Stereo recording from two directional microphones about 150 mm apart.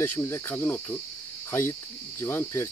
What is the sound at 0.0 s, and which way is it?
Cricket, 15° left (ahead or behind).